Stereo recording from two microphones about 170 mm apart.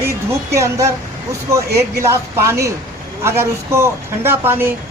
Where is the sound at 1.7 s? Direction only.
70° right (ahead or behind).